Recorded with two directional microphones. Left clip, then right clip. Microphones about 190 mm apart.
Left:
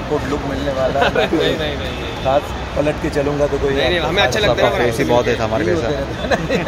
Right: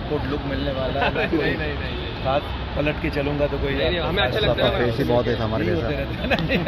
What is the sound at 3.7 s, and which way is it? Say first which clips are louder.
Speech: left 5 dB; 90° left.